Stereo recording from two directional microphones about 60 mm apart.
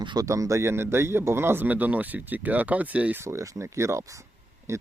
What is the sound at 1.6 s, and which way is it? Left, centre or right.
Speech, right.